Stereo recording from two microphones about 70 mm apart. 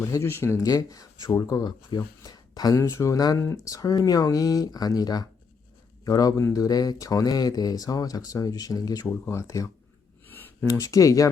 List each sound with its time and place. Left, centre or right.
0.2 s speech: left
0.6 s speech: left
1.5 s speech: left
9.0 s speech: left
10.2 s a sound: left
10.7 s speech: left